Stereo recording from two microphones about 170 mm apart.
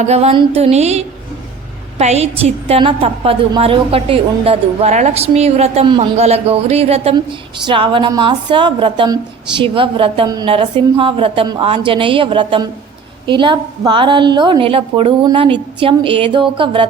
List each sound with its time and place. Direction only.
0.0 s a woman's voice: 40° right (ahead or behind)